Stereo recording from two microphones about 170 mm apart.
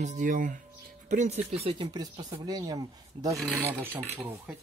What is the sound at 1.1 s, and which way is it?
Speech, 45° right (ahead or behind).